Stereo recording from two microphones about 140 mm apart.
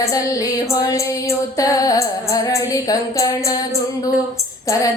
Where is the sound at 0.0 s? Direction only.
25° left (ahead or behind).